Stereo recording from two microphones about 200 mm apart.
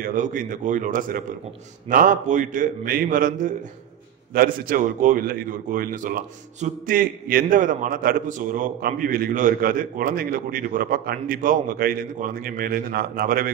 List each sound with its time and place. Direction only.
0.0 s a man's voice: 40° right (ahead or behind)